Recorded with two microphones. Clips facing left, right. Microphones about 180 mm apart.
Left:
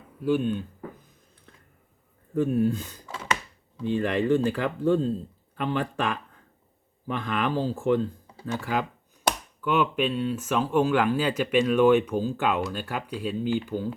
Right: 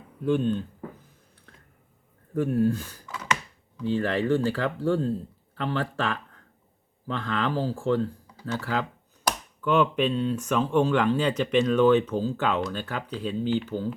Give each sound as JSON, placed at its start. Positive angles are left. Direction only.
{"t": 0.3, "sound": "speech", "side_deg": 10}
{"t": 2.3, "sound": "speech", "side_deg": 20}